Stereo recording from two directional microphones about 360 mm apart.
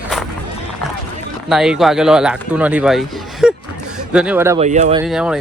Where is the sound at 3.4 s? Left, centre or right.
Centre.